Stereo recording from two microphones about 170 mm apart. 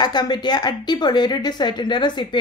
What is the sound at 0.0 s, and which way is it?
A woman's voice, 25° left (ahead or behind).